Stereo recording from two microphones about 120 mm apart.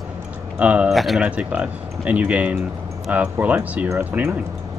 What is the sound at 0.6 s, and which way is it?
Speech, 10° right (ahead or behind).